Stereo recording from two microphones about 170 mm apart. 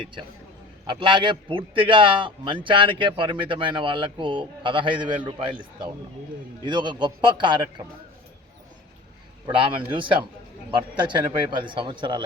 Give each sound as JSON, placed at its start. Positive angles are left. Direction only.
{"t": 0.0, "sound": "speech", "side_deg": -30}
{"t": 6.7, "sound": "speech", "side_deg": -25}
{"t": 9.5, "sound": "a man's voice", "side_deg": -30}